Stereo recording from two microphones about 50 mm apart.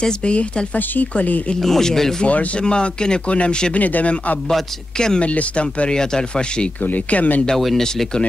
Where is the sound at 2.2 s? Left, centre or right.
Left.